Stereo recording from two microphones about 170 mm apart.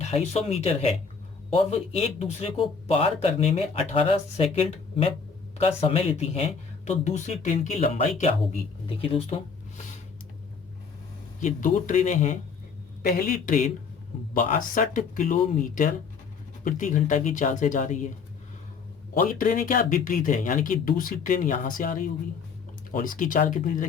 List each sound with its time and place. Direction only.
0.0 s speech: 40° left (ahead or behind)
5.5 s speech: 35° left (ahead or behind)
11.3 s speech: 50° left (ahead or behind)
13.0 s a man's voice: 60° left (ahead or behind)
19.1 s speech: 55° left (ahead or behind)